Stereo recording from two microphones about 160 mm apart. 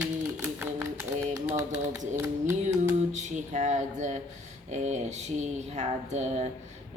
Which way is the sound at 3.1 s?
50° right (ahead or behind).